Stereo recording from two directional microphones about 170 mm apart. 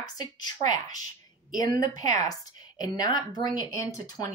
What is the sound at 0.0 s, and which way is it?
Speech, 25° left (ahead or behind).